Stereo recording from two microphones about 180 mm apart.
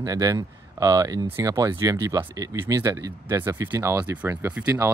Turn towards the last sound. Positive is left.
turn(degrees=-10)  # may be behind; listen again after turning